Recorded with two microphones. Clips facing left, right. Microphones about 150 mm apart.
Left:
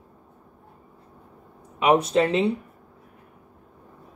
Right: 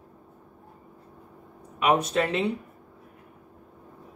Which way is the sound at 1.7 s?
25° left (ahead or behind).